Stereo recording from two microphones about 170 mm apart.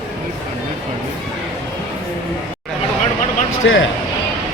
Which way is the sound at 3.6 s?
90° left.